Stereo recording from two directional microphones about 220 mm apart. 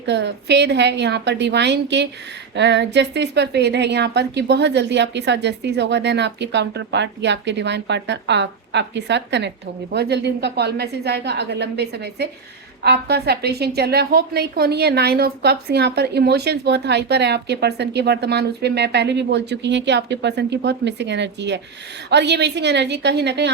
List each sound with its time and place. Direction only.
0.0 s a woman's voice: 50° right (ahead or behind)